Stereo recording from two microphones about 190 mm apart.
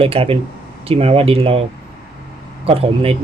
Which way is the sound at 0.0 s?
30° right (ahead or behind).